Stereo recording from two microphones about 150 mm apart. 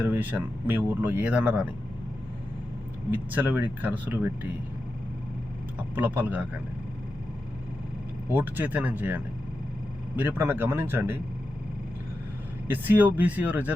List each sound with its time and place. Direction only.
0.0 s speech: 10° right (ahead or behind)
3.1 s speech: 10° right (ahead or behind)
5.9 s speech: 10° right (ahead or behind)
8.3 s speech: 10° right (ahead or behind)
12.6 s speech: 10° right (ahead or behind)